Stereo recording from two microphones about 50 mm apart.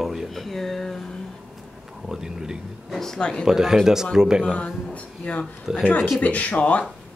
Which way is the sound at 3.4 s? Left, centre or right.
Centre.